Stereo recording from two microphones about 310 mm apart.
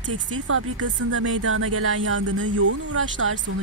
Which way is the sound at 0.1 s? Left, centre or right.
Right.